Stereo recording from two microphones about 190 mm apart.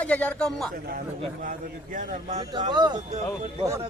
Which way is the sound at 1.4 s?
45° right (ahead or behind).